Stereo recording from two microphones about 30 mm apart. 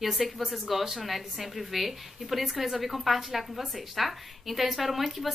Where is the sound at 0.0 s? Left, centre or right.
Centre.